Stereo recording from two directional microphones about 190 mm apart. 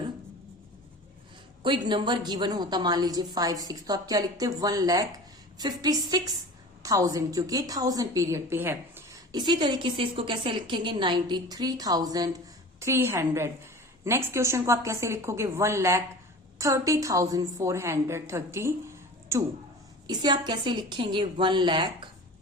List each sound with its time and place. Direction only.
1.6 s a woman's voice: 25° right (ahead or behind)